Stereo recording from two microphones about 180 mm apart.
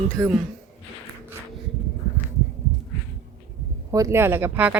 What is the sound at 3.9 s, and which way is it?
Speech, 20° right (ahead or behind).